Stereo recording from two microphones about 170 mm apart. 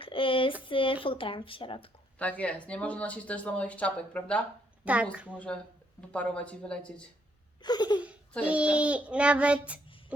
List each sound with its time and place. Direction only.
0.0 s a sound: 30° left (ahead or behind)
1.0 s speech: 30° left (ahead or behind)
2.1 s speech: 10° left (ahead or behind)
5.1 s child singing: 5° right (ahead or behind)
6.0 s speech: 10° left (ahead or behind)
7.6 s laughter: 25° left (ahead or behind)
8.4 s child singing: 5° right (ahead or behind)